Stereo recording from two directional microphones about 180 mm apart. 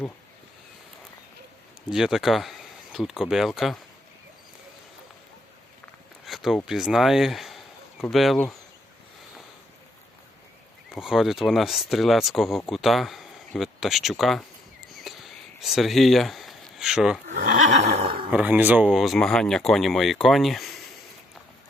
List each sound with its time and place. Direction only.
1.9 s speech: 5° right (ahead or behind)
6.2 s a sound: centre (ahead or behind)
6.7 s speech: centre (ahead or behind)
10.9 s speech: centre (ahead or behind)
15.0 s a sound: centre (ahead or behind)
17.3 s neigh: 45° right (ahead or behind); by 18.3 s 30° right (ahead or behind)
18.3 s speech: 10° right (ahead or behind)